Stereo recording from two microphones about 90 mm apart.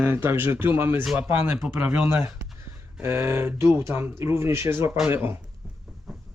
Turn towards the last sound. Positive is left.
turn(degrees=-25)  # may be behind; listen again after turning